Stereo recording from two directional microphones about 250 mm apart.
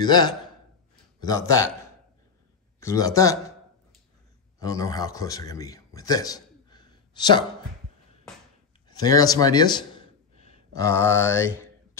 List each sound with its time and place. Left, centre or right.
0.0 s a man's voice: centre
2.8 s a man's voice: centre
4.6 s a man's voice: centre
8.8 s a sound: centre